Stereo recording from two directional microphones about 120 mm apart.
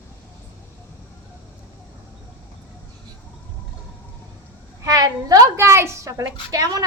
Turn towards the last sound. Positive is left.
turn(degrees=-30)  # may be behind; listen again after turning